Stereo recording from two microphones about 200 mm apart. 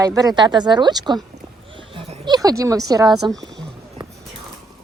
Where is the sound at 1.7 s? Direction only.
25° right (ahead or behind).